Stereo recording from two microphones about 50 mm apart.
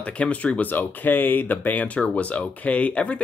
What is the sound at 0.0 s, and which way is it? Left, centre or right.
Speech, left.